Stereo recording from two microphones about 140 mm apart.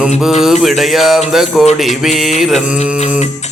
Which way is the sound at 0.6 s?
Centre (ahead or behind).